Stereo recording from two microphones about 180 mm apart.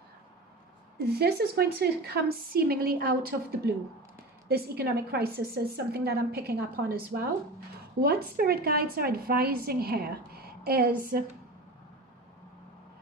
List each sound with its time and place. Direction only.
0.9 s a woman's voice: 60° right (ahead or behind)